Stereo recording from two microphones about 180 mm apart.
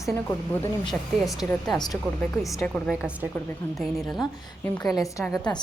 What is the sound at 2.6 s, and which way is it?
A woman's voice, 5° left (ahead or behind).